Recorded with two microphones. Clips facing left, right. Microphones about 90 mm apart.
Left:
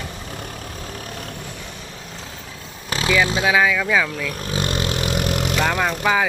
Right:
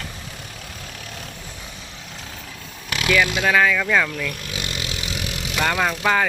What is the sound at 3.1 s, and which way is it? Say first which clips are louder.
Speech: even; 25° left (ahead or behind).